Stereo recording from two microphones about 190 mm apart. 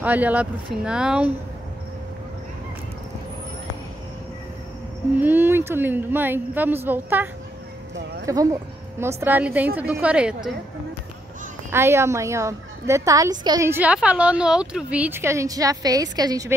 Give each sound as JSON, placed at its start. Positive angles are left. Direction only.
{"t": 0.0, "sound": "a woman's voice", "side_deg": -10}
{"t": 5.2, "sound": "a woman's voice", "side_deg": -10}
{"t": 8.3, "sound": "a woman's voice", "side_deg": -15}
{"t": 11.7, "sound": "a woman's voice", "side_deg": -15}